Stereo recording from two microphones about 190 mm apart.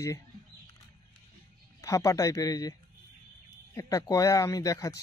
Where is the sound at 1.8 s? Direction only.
15° left (ahead or behind).